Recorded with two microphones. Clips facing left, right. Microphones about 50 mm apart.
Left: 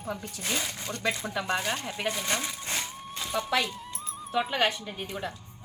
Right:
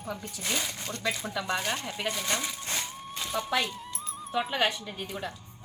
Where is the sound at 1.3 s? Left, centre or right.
Left.